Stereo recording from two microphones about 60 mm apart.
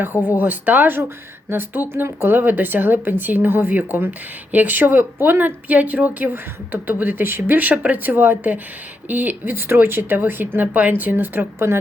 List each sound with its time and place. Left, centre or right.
0.3 s speech: right